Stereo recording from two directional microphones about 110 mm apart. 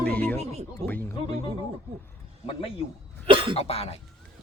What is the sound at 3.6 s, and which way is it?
Speech, 65° left (ahead or behind).